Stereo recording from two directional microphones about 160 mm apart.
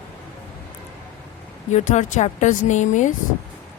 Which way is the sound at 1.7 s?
50° left (ahead or behind).